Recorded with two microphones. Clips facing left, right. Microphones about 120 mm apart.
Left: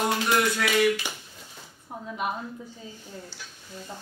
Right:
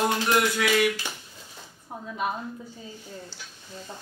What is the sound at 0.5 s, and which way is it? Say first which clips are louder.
Speech: right 1 dB; 5° left (ahead or behind).